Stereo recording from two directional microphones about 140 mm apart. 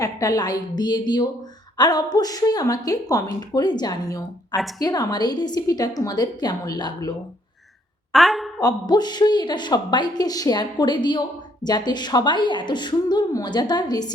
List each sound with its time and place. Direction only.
0.0 s a woman's voice: 25° left (ahead or behind)
8.1 s a woman's voice: centre (ahead or behind)
8.6 s speech: 30° left (ahead or behind)